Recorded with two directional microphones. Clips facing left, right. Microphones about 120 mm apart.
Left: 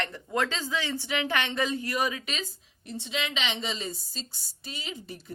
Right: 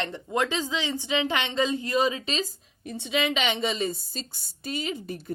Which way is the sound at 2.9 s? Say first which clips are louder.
Right 6 dB; 55° right (ahead or behind).